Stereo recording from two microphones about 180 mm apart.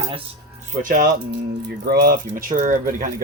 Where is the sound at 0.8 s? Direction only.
50° right (ahead or behind).